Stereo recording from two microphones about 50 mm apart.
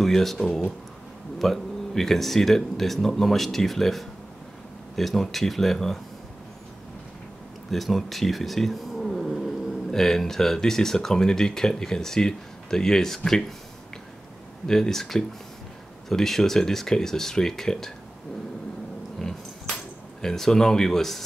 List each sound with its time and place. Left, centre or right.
0.0 s speech: centre
7.7 s speech: centre
14.7 s speech: centre
20.2 s speech: centre